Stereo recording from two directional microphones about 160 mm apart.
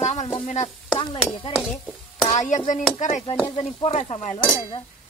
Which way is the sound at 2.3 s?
45° left (ahead or behind).